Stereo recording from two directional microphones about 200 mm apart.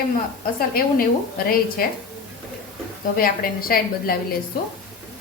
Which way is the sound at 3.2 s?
45° left (ahead or behind).